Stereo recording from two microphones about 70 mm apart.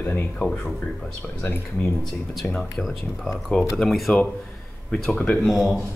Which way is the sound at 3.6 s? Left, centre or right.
Left.